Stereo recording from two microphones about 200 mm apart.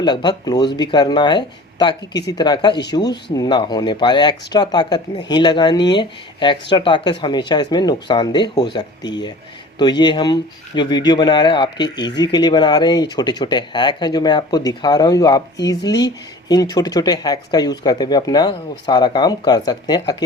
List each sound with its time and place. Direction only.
0.0 s speech: 20° left (ahead or behind)
10.0 s speech: 20° left (ahead or behind)